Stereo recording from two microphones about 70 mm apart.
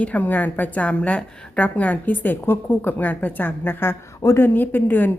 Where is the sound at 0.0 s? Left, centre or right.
Left.